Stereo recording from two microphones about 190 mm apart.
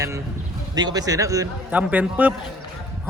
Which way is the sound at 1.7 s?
5° right (ahead or behind).